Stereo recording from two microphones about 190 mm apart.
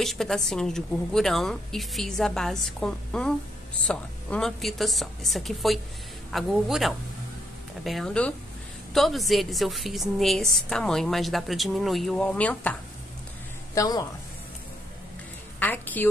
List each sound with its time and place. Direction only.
0.0 s a woman's voice: centre (ahead or behind)
13.7 s a woman's voice: 20° left (ahead or behind)
15.6 s a woman's voice: 10° left (ahead or behind)